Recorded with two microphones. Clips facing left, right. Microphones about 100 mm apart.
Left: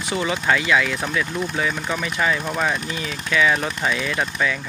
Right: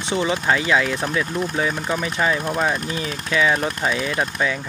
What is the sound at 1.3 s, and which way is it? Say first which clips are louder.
Speech: right 1 dB; 5° right (ahead or behind).